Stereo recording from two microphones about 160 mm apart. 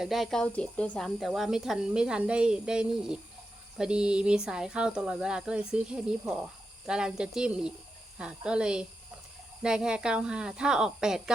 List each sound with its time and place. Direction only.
0.0 s speech: centre (ahead or behind)